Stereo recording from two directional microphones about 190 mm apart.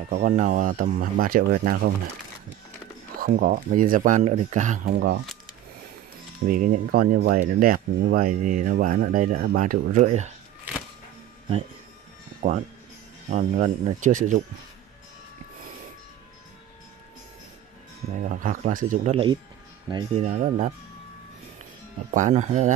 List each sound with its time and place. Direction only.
0.1 s speech: 40° right (ahead or behind)
3.2 s speech: 45° right (ahead or behind)
6.4 s speech: 45° right (ahead or behind)
12.4 s speech: 45° right (ahead or behind)
18.2 s speech: 45° right (ahead or behind)
20.2 s speech: 40° right (ahead or behind)
22.1 s speech: 40° right (ahead or behind)